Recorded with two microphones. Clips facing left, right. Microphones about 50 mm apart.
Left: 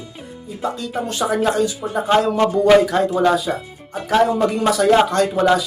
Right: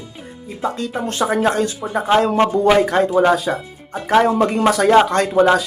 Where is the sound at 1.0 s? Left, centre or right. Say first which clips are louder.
Right 2 dB; right.